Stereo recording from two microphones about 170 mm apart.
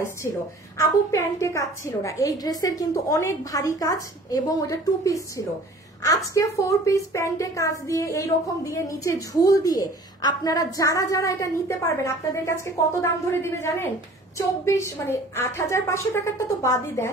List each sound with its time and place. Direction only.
0.7 s a woman's voice: 15° left (ahead or behind)